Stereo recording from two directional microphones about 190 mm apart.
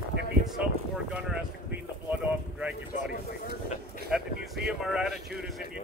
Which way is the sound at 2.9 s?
40° left (ahead or behind).